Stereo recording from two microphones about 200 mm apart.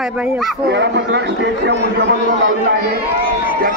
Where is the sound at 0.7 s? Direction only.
60° right (ahead or behind).